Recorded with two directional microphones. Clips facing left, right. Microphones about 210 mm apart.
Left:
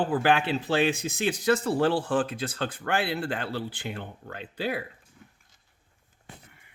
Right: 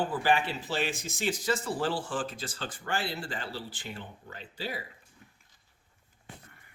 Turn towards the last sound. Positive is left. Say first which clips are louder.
# left 7 dB
turn(degrees=60)  # may be behind; listen again after turning